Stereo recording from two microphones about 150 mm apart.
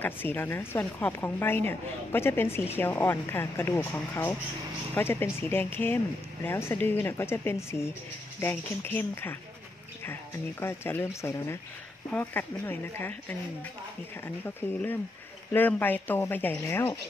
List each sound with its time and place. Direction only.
0.0 s a woman's voice: 15° left (ahead or behind)
10.6 s a woman's voice: 15° left (ahead or behind)